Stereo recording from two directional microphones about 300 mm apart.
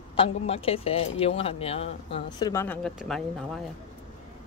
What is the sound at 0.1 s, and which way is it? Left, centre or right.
Speech, centre.